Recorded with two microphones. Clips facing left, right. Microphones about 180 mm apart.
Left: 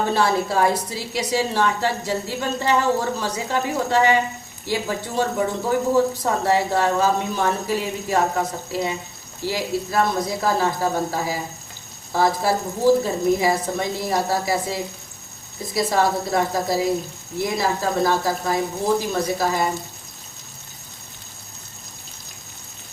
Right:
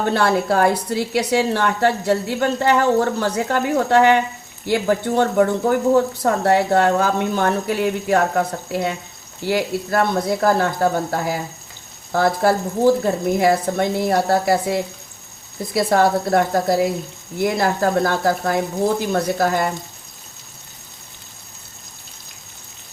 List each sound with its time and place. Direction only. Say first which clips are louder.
0.0 s a woman's voice: right 2 dB; 60° right (ahead or behind)
12.1 s a woman's voice: right 3 dB; 60° right (ahead or behind)